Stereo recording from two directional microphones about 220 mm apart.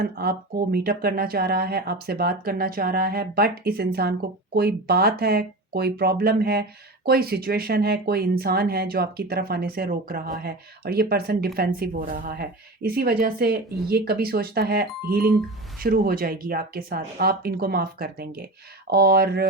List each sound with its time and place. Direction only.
0.0 s speech: 45° right (ahead or behind)